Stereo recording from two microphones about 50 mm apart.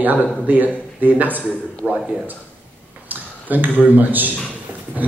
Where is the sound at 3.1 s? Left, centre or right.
Right.